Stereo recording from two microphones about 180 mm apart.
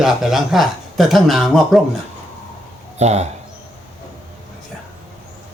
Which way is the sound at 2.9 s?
40° right (ahead or behind).